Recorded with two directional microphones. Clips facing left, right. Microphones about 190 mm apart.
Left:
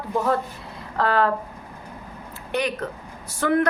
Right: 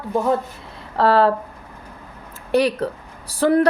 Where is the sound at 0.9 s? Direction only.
30° right (ahead or behind).